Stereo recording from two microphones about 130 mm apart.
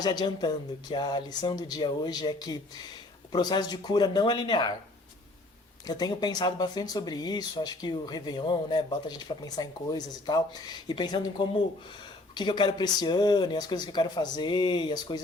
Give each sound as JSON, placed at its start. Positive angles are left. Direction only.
{"t": 0.0, "sound": "speech", "side_deg": 30}
{"t": 5.8, "sound": "speech", "side_deg": 30}